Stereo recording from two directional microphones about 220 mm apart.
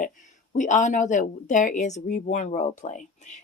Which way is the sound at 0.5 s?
35° left (ahead or behind).